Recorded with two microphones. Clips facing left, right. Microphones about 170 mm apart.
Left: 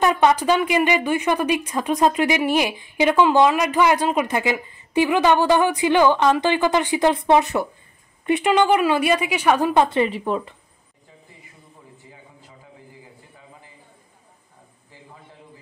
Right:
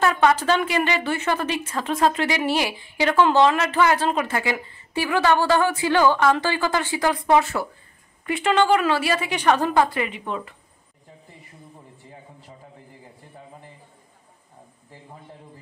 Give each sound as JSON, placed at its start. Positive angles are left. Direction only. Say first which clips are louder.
{"t": 0.0, "sound": "a woman's voice", "louder": "left 2 dB", "side_deg": 20}
{"t": 9.8, "sound": "a woman's voice", "louder": "left 3 dB", "side_deg": 25}